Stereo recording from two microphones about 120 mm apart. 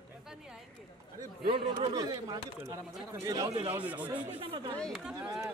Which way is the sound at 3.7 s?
15° right (ahead or behind).